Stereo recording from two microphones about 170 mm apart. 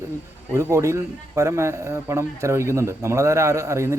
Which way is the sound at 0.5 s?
15° right (ahead or behind).